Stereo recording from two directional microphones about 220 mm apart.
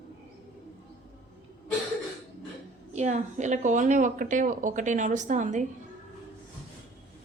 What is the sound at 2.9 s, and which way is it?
A woman's voice, 30° right (ahead or behind).